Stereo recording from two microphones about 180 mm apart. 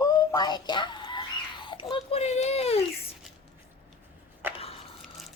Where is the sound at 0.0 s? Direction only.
20° left (ahead or behind); by 2.8 s 35° left (ahead or behind).